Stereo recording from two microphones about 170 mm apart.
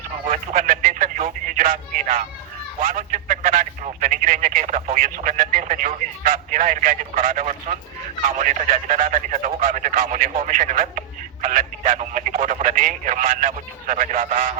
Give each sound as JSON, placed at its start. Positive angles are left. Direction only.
{"t": 0.3, "sound": "speech", "side_deg": -50}